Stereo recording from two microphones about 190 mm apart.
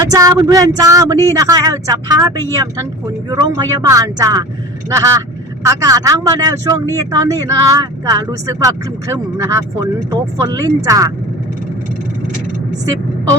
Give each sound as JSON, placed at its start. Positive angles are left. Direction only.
{"t": 0.1, "sound": "speech", "side_deg": -20}